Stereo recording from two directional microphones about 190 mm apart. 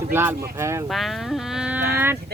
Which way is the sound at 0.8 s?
Centre (ahead or behind).